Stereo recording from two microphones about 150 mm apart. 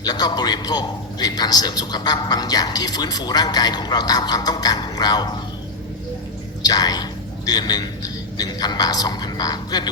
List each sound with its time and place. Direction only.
0.0 s a man's voice: 25° left (ahead or behind)
6.6 s a man's voice: 25° left (ahead or behind)